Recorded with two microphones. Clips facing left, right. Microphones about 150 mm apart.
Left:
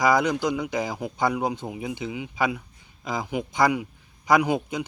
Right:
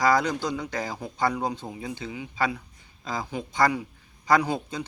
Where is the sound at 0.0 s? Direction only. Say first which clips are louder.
Left 2 dB; 15° left (ahead or behind).